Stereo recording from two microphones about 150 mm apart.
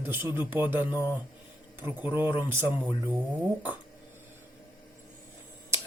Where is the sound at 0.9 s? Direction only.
15° left (ahead or behind).